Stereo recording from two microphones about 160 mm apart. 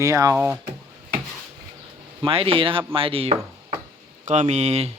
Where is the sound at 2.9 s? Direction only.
35° right (ahead or behind).